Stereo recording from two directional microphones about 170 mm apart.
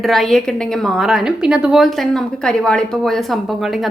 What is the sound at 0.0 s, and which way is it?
A woman's voice, centre (ahead or behind).